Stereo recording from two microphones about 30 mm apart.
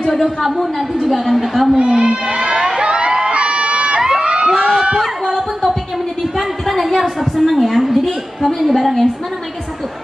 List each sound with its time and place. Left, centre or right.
0.1 s a woman's voice: centre
1.8 s speech: right
2.2 s crowd: right
4.1 s crowd: right
6.3 s a woman's voice: centre